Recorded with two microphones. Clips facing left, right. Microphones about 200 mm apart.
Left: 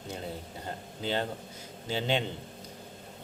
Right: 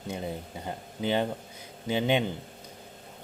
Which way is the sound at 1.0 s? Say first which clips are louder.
Right 4 dB; 15° right (ahead or behind).